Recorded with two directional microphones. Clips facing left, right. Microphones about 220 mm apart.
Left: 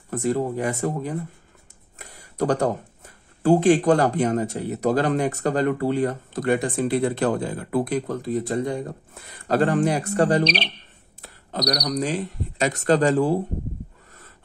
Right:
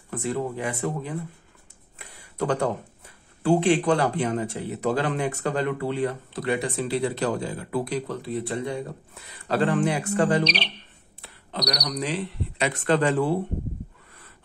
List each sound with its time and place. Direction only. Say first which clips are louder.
0.1 s speech: left 5 dB; 40° left (ahead or behind)
2.0 s a sound: left 3 dB; 45° left (ahead or behind)
3.4 s speech: left 4 dB; 45° left (ahead or behind)